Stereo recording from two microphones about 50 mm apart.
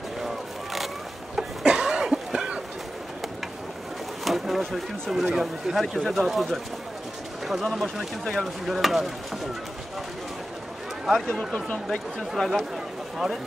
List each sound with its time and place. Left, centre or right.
1.3 s cough: centre
4.2 s a sound: centre
5.1 s speech: centre
11.1 s speech: centre
12.3 s speech: centre